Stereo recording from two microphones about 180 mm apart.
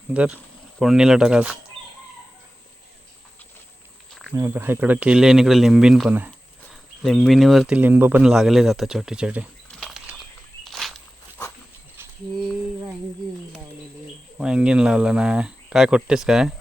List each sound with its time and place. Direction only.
0.1 s speech: 5° right (ahead or behind)
4.4 s speech: 15° right (ahead or behind)
7.0 s speech: centre (ahead or behind)
10.6 s walk: centre (ahead or behind)
14.3 s speech: 5° right (ahead or behind)